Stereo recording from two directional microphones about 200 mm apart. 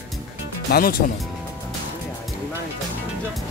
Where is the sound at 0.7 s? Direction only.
55° left (ahead or behind).